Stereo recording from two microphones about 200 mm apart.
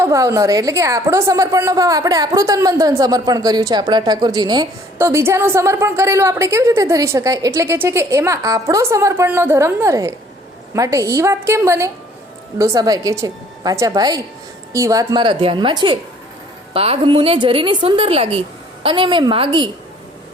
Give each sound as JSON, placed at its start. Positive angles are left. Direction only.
{"t": 0.0, "sound": "a woman's voice", "side_deg": -15}